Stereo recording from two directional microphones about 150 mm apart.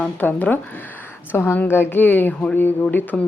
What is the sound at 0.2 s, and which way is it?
A woman's voice, 10° left (ahead or behind).